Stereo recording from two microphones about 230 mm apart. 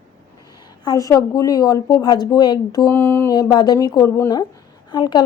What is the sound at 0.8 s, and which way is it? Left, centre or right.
Speech, centre.